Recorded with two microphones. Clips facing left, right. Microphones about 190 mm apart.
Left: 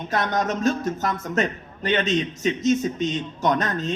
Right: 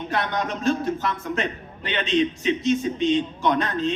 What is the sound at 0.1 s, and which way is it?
A man's voice, 40° left (ahead or behind).